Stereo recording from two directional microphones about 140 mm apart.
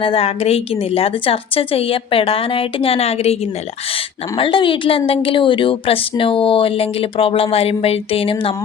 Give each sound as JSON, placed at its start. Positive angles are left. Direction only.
{"t": 0.0, "sound": "a woman's voice", "side_deg": 40}